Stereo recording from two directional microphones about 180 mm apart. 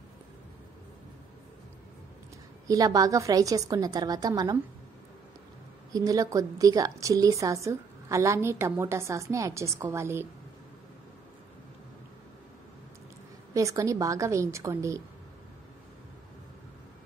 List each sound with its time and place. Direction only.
2.7 s a woman's voice: 20° right (ahead or behind)
5.9 s a woman's voice: 20° right (ahead or behind)
13.5 s a woman's voice: 15° right (ahead or behind)